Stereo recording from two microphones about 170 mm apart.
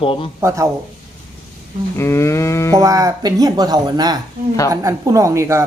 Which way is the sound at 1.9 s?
15° left (ahead or behind).